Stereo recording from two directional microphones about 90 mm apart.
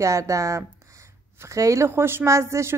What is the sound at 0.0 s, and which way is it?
A woman's voice, 35° right (ahead or behind).